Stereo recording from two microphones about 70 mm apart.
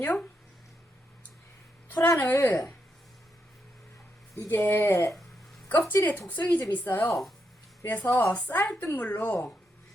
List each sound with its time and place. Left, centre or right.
0.0 s a woman's voice: centre
1.9 s speech: left
4.4 s speech: left
6.1 s a woman's voice: left
7.1 s speech: centre
8.0 s a woman's voice: left